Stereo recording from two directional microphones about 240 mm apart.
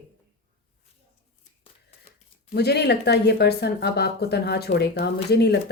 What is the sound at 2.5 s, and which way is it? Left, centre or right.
Speech, left.